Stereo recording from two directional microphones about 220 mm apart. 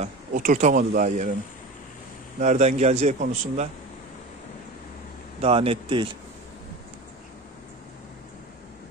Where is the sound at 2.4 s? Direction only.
30° right (ahead or behind).